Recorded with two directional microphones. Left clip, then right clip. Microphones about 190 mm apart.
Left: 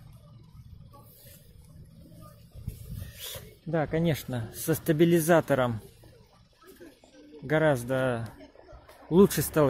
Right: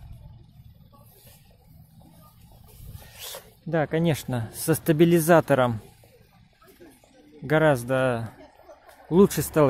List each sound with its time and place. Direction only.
3.1 s speech: 15° right (ahead or behind)
7.4 s speech: 20° right (ahead or behind)